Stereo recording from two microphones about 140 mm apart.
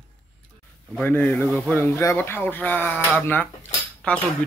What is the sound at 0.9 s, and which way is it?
Dishes, 15° left (ahead or behind).